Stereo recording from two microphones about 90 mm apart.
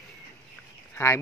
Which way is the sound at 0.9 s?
25° left (ahead or behind).